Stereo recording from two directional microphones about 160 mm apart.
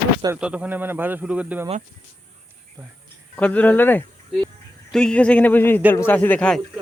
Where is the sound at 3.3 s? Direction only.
10° left (ahead or behind).